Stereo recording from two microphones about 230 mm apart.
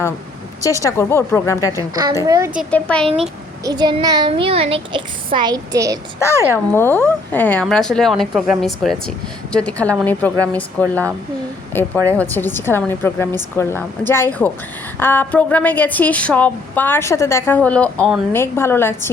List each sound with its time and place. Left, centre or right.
0.6 s a woman's voice: centre
1.7 s a woman's voice: centre
2.6 s speech: centre
3.1 s a child's voice: right
6.1 s a woman's voice: centre